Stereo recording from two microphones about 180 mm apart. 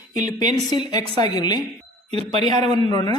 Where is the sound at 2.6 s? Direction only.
25° left (ahead or behind).